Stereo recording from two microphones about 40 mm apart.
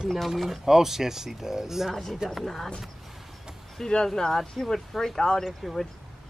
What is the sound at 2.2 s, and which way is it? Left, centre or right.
Speech, centre.